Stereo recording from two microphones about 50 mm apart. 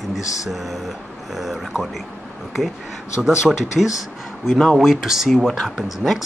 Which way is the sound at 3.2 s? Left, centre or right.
Centre.